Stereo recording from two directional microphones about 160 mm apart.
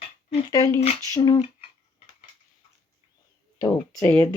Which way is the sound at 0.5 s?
20° left (ahead or behind).